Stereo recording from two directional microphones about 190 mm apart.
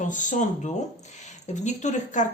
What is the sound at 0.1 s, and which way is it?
Speech, 40° left (ahead or behind).